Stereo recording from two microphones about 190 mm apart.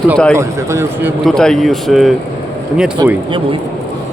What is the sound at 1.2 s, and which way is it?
Speech, centre (ahead or behind).